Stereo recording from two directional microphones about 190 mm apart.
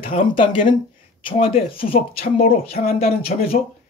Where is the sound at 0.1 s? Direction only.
35° left (ahead or behind).